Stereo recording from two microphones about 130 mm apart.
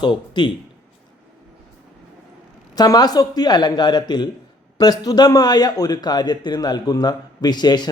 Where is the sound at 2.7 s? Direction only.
30° left (ahead or behind).